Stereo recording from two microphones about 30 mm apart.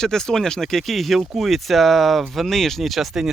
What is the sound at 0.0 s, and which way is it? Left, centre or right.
Speech, centre.